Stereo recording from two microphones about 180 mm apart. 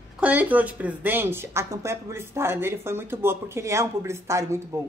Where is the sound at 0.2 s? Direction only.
10° right (ahead or behind).